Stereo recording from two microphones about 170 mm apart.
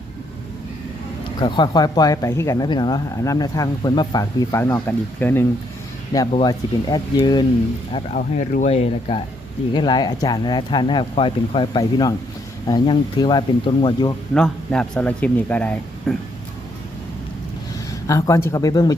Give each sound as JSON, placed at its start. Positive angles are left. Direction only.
{"t": 1.4, "sound": "speech", "side_deg": 25}
{"t": 6.3, "sound": "speech", "side_deg": 25}
{"t": 8.1, "sound": "speech", "side_deg": 50}
{"t": 14.3, "sound": "speech", "side_deg": 5}
{"t": 18.1, "sound": "speech", "side_deg": 20}